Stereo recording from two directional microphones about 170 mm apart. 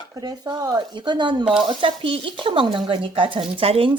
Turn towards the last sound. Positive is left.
turn(degrees=-35)  # may be behind; listen again after turning